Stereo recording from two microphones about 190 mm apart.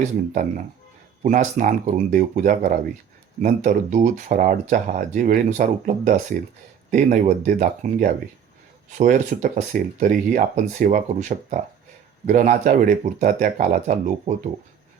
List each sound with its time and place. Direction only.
1.2 s speech: 40° right (ahead or behind)